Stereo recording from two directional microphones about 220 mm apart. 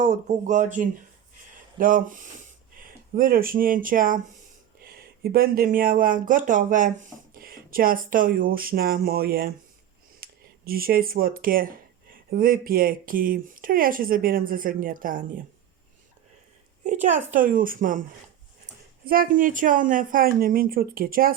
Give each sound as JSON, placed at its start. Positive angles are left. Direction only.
{"t": 0.0, "sound": "speech", "side_deg": -35}
{"t": 10.2, "sound": "a sound", "side_deg": -45}
{"t": 10.7, "sound": "speech", "side_deg": -40}
{"t": 16.8, "sound": "speech", "side_deg": -30}
{"t": 19.0, "sound": "speech", "side_deg": -40}